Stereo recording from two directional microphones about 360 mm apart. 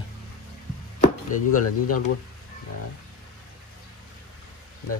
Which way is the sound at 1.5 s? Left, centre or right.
Left.